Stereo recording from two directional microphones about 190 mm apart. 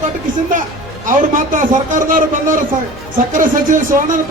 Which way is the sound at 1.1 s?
45° right (ahead or behind).